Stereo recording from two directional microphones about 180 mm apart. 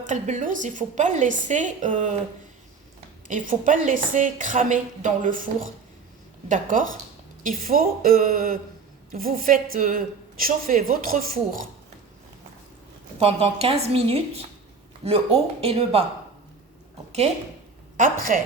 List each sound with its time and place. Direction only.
0.0 s a woman's voice: 45° right (ahead or behind)
3.2 s a woman's voice: 45° right (ahead or behind)
6.5 s a woman's voice: 45° right (ahead or behind)
13.1 s a woman's voice: 30° right (ahead or behind)
17.9 s a woman's voice: 50° right (ahead or behind)